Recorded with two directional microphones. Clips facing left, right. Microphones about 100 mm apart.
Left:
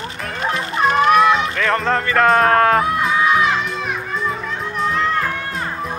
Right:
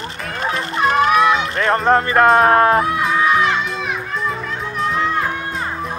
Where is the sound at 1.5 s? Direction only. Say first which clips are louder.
Right 3 dB; 30° right (ahead or behind).